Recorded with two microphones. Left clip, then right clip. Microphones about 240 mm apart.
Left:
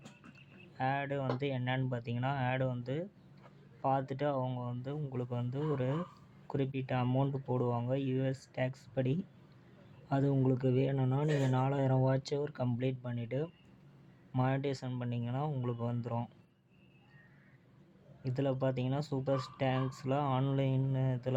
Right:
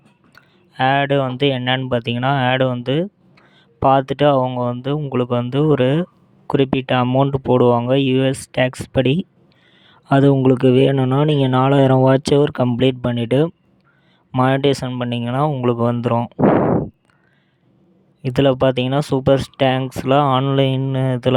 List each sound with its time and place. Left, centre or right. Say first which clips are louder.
0.3 s speech: right 19 dB; right
18.2 s speech: right 19 dB; right